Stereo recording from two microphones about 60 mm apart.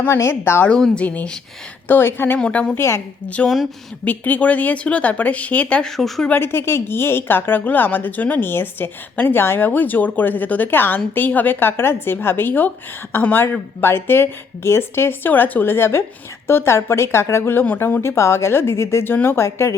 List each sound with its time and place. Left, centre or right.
0.0 s speech: left
0.7 s speech: centre
1.9 s a woman's voice: left
2.5 s speech: left
2.7 s speech: left
3.2 s speech: left
5.8 s speech: centre
6.3 s a woman's voice: left
15.3 s a woman's voice: left
19.5 s speech: left